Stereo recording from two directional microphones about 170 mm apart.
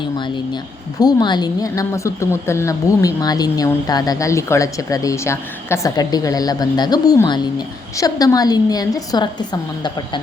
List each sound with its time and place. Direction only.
0.9 s a woman's voice: 25° left (ahead or behind)